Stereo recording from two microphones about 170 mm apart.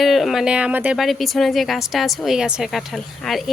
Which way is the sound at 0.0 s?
Centre (ahead or behind).